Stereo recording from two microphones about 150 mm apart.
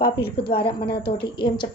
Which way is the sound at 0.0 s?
90° left.